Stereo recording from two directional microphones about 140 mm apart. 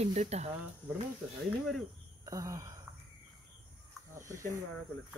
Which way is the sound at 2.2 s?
25° right (ahead or behind).